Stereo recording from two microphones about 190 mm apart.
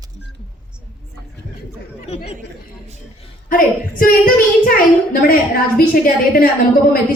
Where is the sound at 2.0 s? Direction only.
30° left (ahead or behind).